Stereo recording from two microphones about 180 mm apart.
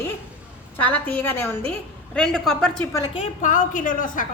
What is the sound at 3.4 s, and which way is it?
Speech, 45° left (ahead or behind).